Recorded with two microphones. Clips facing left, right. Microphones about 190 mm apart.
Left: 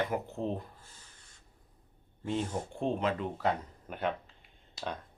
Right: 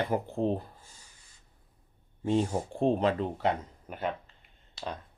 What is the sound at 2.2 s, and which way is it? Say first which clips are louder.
Speech: right 6 dB; 35° right (ahead or behind).